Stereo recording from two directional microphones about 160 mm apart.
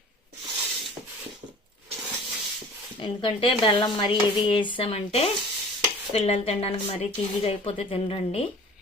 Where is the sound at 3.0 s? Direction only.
30° left (ahead or behind).